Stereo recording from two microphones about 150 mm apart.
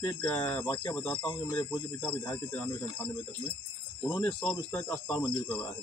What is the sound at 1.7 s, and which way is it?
Speech, 30° left (ahead or behind).